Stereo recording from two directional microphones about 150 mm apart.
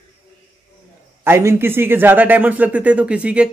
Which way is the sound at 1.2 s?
15° right (ahead or behind).